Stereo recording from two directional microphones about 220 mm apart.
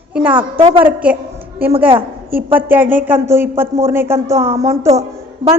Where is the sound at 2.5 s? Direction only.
10° right (ahead or behind).